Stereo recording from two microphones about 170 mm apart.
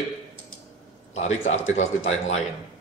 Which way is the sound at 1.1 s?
40° left (ahead or behind).